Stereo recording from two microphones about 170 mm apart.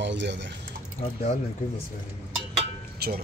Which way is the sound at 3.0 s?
70° right (ahead or behind).